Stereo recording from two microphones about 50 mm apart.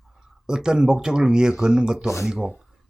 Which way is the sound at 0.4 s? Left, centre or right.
Centre.